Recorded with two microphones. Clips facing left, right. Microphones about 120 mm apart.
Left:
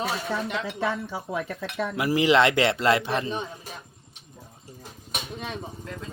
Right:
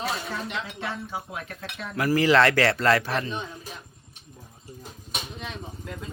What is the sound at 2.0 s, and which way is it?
A man's voice, 20° left (ahead or behind).